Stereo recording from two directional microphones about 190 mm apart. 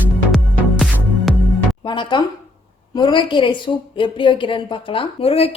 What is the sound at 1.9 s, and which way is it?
A woman's voice, 25° left (ahead or behind).